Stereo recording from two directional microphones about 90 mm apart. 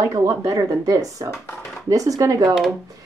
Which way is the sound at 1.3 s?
30° left (ahead or behind).